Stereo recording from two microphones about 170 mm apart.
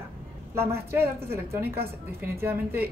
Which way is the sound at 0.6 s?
15° right (ahead or behind).